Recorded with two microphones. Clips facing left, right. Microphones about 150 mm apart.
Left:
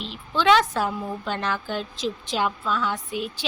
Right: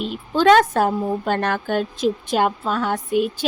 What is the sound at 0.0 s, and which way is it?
A woman's voice, 50° right (ahead or behind).